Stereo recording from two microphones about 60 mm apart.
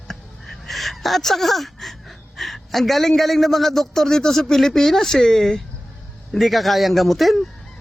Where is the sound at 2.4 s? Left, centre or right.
Centre.